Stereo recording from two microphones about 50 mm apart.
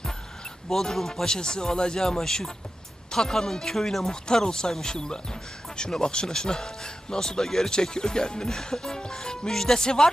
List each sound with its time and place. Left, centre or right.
0.7 s speech: centre